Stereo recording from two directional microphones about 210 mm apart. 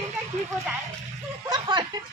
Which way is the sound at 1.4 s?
20° right (ahead or behind).